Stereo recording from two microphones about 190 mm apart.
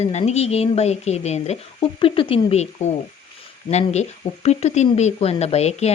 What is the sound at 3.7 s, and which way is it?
Speech, 35° left (ahead or behind).